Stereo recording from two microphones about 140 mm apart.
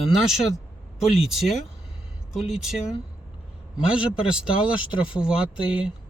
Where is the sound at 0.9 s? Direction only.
45° left (ahead or behind).